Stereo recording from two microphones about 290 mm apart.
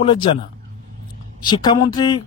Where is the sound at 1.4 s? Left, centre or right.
Centre.